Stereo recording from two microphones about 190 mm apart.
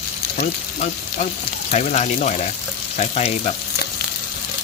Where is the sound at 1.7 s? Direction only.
40° left (ahead or behind).